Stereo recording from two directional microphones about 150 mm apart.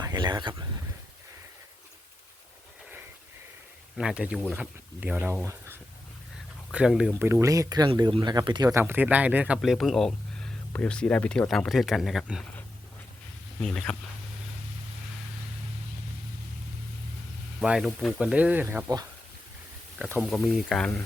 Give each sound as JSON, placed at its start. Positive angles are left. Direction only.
{"t": 0.0, "sound": "a sound", "side_deg": -30}
{"t": 3.9, "sound": "speech", "side_deg": -5}
{"t": 6.7, "sound": "speech", "side_deg": -5}
{"t": 7.2, "sound": "speech", "side_deg": -15}
{"t": 8.7, "sound": "speech", "side_deg": -15}
{"t": 13.6, "sound": "speech", "side_deg": 5}
{"t": 17.6, "sound": "speech", "side_deg": -5}
{"t": 20.2, "sound": "speech", "side_deg": 0}